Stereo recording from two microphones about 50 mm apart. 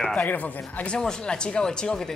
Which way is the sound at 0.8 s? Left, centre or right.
Centre.